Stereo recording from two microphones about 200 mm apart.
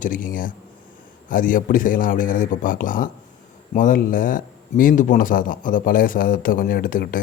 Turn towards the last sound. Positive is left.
turn(degrees=45)  # may be behind; listen again after turning